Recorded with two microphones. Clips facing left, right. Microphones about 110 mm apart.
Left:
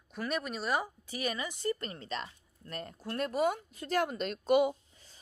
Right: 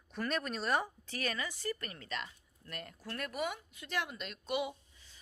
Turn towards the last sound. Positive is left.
turn(degrees=45)  # may be behind; listen again after turning